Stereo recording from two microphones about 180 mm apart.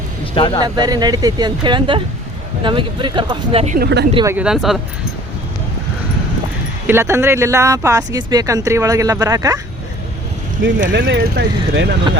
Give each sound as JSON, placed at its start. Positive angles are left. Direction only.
{"t": 0.3, "sound": "speech", "side_deg": 25}
{"t": 0.6, "sound": "speech", "side_deg": -20}
{"t": 3.8, "sound": "speech", "side_deg": -65}
{"t": 4.3, "sound": "speech", "side_deg": -5}
{"t": 6.8, "sound": "speech", "side_deg": -15}
{"t": 10.9, "sound": "speech", "side_deg": -70}